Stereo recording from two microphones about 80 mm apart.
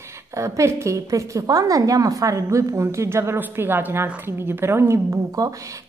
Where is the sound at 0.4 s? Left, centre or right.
Right.